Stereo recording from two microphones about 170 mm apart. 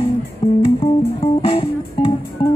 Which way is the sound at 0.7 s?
35° left (ahead or behind).